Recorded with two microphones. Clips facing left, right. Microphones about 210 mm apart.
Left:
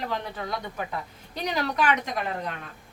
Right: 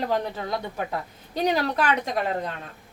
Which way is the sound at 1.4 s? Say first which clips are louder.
Right 4 dB; 35° right (ahead or behind).